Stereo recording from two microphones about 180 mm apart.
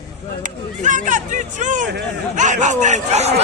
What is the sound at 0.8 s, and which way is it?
Speech, 45° right (ahead or behind).